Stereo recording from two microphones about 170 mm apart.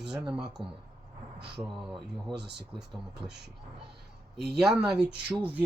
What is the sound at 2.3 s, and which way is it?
Speech, 80° right.